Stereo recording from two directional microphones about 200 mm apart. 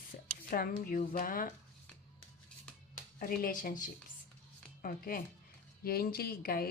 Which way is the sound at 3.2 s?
45° left (ahead or behind).